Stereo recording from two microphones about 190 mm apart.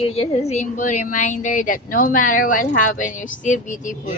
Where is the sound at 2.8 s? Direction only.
40° left (ahead or behind).